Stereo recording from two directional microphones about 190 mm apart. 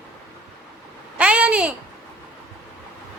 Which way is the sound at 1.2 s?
5° right (ahead or behind).